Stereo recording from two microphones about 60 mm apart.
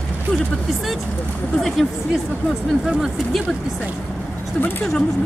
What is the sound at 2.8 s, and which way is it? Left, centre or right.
Speech, centre.